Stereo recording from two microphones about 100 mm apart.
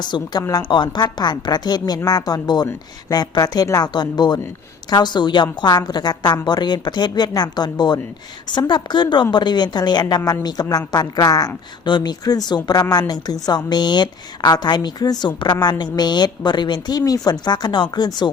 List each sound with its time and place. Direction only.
0.0 s a woman's voice: 45° left (ahead or behind)